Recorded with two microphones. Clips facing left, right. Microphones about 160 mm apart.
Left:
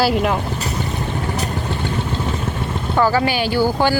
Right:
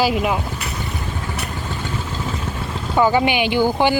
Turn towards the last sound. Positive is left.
turn(degrees=-15)  # may be behind; listen again after turning